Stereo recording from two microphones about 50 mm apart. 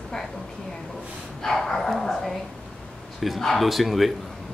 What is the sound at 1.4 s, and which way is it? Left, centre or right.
Speech, centre.